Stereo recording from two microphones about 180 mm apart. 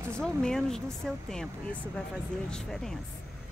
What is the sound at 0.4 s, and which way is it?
Speech, 5° left (ahead or behind).